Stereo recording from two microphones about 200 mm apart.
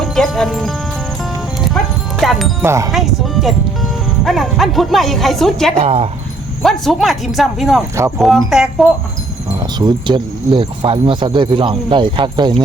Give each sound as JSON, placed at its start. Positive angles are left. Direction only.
{"t": 0.0, "sound": "speech", "side_deg": 0}
{"t": 1.6, "sound": "music", "side_deg": 0}
{"t": 2.6, "sound": "speech", "side_deg": -15}
{"t": 2.9, "sound": "speech", "side_deg": 0}
{"t": 5.8, "sound": "speech", "side_deg": -30}
{"t": 6.6, "sound": "speech", "side_deg": 0}
{"t": 8.0, "sound": "speech", "side_deg": -15}
{"t": 8.4, "sound": "speech", "side_deg": -5}
{"t": 9.6, "sound": "speech", "side_deg": -20}